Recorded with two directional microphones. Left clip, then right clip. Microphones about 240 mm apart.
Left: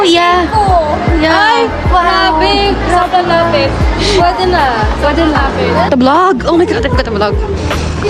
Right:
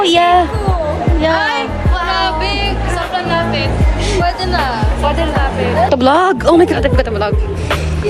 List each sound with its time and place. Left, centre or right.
0.0 s a sound: centre
1.2 s music: centre
1.5 s music: left
4.2 s speech: left
6.0 s speech: centre